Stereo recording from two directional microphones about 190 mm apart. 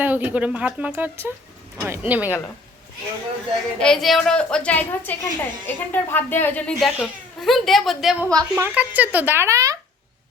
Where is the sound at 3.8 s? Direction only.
Centre (ahead or behind); by 9.8 s 15° right (ahead or behind).